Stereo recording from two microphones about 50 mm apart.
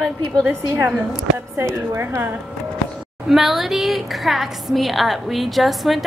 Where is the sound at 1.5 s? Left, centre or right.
Right.